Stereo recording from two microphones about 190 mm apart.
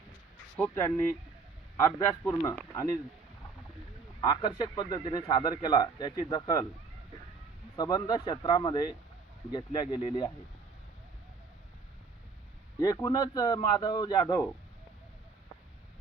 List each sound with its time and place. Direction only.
0.6 s speech: 15° left (ahead or behind)
4.2 s speech: 20° left (ahead or behind)
7.8 s speech: 20° left (ahead or behind)
12.8 s speech: 20° left (ahead or behind)